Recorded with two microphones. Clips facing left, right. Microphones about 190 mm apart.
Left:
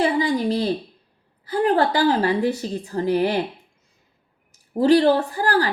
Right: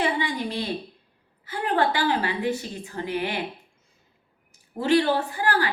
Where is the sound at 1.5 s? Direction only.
35° left (ahead or behind).